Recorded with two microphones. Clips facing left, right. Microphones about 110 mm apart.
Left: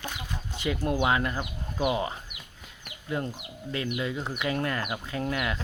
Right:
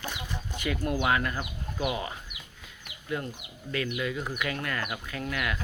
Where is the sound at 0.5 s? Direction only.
25° left (ahead or behind).